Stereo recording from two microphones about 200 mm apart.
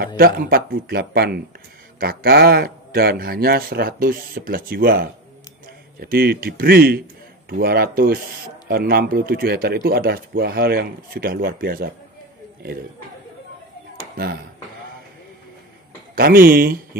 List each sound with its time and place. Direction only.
0.2 s a man's voice: 45° right (ahead or behind)
13.9 s a sound: 50° right (ahead or behind)
16.2 s a man's voice: 50° right (ahead or behind)